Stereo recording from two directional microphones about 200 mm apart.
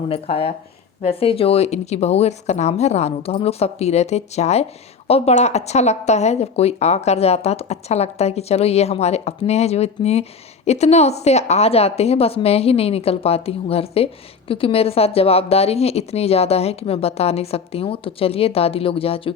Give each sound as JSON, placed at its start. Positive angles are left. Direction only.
{"t": 0.1, "sound": "a woman's voice", "side_deg": 30}